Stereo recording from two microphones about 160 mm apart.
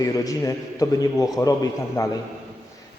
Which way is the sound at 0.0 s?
20° left (ahead or behind).